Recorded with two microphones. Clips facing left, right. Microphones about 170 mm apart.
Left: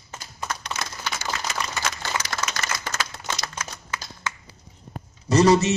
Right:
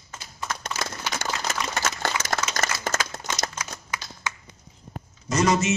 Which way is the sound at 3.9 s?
15° right (ahead or behind).